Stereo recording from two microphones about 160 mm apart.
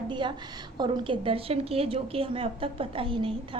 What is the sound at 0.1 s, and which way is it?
A woman's voice, 30° right (ahead or behind).